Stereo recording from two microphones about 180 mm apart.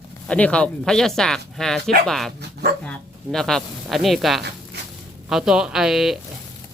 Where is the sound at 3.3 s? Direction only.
Centre (ahead or behind).